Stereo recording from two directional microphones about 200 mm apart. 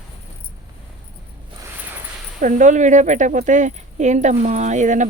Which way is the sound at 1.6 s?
10° right (ahead or behind).